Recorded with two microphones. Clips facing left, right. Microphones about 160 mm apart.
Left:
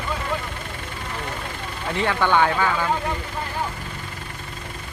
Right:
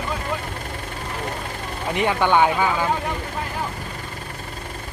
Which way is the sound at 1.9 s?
15° right (ahead or behind).